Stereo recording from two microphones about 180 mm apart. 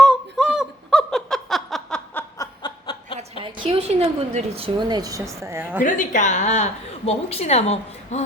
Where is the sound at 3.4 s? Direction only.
25° right (ahead or behind).